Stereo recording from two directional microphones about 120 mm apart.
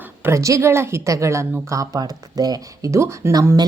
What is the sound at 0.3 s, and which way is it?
A woman's voice, 25° right (ahead or behind).